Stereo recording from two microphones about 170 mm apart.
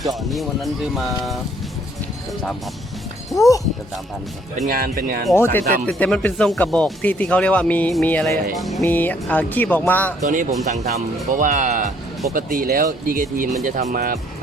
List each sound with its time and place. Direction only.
0.1 s speech: centre (ahead or behind)
4.5 s speech: 50° right (ahead or behind)
5.3 s speech: 15° left (ahead or behind)
8.8 s speech: 10° left (ahead or behind)
10.2 s speech: 45° right (ahead or behind)